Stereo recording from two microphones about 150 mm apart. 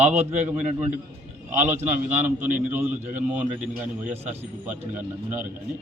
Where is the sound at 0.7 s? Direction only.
50° right (ahead or behind).